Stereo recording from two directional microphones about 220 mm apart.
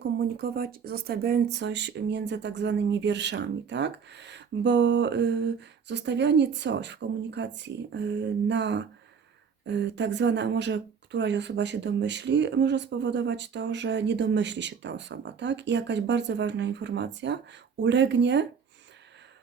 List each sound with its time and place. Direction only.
0.0 s speech: 45° right (ahead or behind)